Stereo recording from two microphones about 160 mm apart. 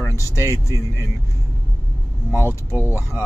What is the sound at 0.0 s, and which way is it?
Speech, 20° left (ahead or behind).